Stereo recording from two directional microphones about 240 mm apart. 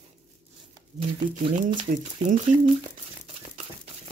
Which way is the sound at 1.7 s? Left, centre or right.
Right.